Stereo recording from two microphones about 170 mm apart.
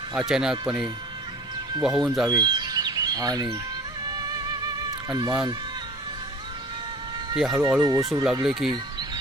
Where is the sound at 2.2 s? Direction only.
25° right (ahead or behind).